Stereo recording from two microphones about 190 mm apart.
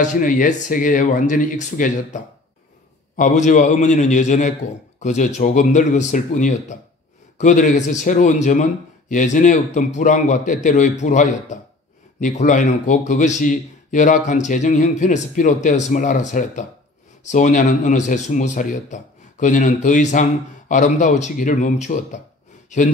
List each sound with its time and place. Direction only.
0.0 s speech: 40° left (ahead or behind)